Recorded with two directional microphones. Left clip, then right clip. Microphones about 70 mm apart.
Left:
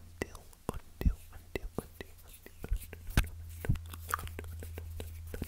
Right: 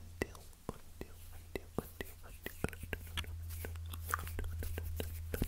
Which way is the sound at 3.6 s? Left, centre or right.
Left.